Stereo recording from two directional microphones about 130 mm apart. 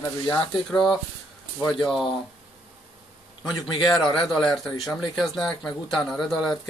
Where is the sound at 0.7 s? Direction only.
5° left (ahead or behind).